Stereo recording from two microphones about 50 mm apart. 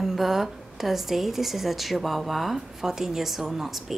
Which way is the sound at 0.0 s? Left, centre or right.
Centre.